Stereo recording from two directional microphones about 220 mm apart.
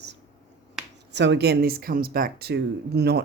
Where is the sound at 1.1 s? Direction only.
50° right (ahead or behind).